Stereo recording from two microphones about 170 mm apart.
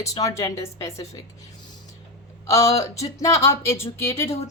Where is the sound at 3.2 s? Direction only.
15° left (ahead or behind).